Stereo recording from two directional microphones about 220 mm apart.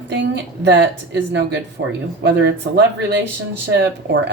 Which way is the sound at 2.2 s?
50° right (ahead or behind).